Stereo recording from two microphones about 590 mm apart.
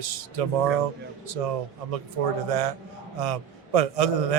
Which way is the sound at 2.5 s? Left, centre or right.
Right.